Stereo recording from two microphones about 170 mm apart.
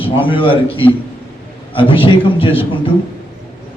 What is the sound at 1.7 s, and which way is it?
A man's voice, 30° left (ahead or behind).